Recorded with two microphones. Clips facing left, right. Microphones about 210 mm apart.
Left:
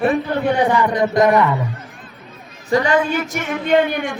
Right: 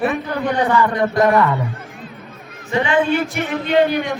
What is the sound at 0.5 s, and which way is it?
Speech, 15° left (ahead or behind).